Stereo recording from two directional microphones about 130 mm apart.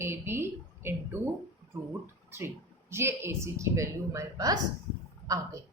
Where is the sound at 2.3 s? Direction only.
20° right (ahead or behind).